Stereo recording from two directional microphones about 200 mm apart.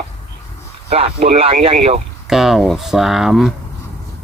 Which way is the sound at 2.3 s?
Centre (ahead or behind).